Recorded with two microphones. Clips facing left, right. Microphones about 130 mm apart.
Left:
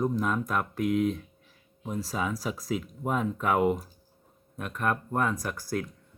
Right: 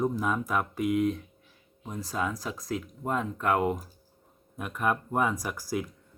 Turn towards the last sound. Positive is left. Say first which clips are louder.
# even
turn(degrees=-10)  # may be behind; listen again after turning